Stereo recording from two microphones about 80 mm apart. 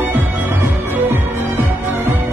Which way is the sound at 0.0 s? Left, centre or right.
Right.